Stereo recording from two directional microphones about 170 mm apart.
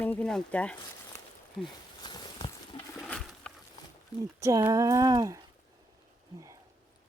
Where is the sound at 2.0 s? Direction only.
25° left (ahead or behind).